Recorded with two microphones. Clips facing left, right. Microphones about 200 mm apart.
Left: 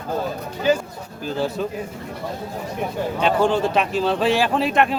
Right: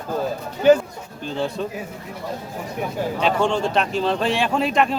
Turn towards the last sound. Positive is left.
turn(degrees=0)  # may be behind; listen again after turning